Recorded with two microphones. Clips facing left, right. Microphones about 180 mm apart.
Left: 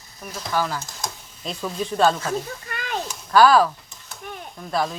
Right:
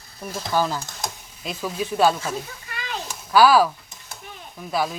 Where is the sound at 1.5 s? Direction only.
5° right (ahead or behind).